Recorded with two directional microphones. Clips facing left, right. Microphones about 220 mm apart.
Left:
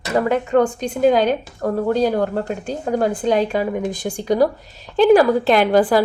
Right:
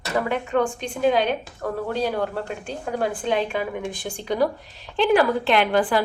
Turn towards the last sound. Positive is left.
turn(degrees=40)  # may be behind; listen again after turning